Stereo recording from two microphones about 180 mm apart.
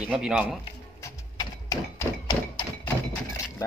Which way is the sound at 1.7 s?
20° left (ahead or behind).